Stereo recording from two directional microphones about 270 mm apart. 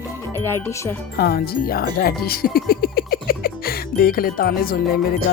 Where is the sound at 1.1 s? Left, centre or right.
Left.